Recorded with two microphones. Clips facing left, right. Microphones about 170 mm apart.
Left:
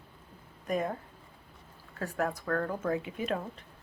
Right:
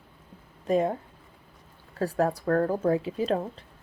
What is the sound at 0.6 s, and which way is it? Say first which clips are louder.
Speech: right 7 dB; 25° right (ahead or behind).